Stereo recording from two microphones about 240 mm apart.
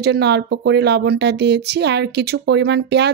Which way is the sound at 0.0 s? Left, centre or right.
Right.